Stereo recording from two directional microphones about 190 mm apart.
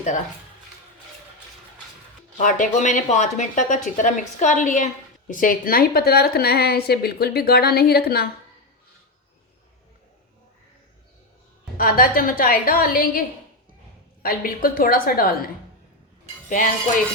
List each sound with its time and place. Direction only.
2.4 s a woman's voice: 45° left (ahead or behind)
11.8 s speech: 50° left (ahead or behind)